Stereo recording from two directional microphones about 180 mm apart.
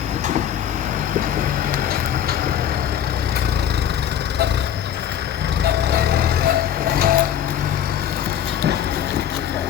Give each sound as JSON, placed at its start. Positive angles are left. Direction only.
{"t": 5.6, "sound": "vehicle", "side_deg": -60}